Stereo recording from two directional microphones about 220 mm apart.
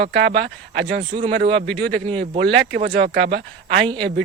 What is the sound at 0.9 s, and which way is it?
Speech, 25° right (ahead or behind).